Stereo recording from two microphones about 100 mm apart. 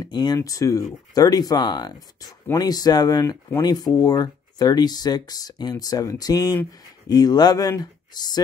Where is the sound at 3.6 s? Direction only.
40° left (ahead or behind).